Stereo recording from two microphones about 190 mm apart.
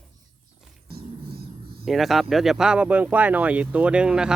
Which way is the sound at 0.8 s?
55° right (ahead or behind).